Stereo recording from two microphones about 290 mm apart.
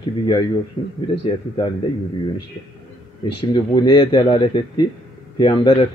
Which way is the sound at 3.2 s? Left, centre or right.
Centre.